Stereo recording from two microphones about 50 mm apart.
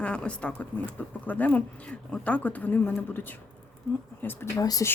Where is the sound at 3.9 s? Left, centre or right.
Left.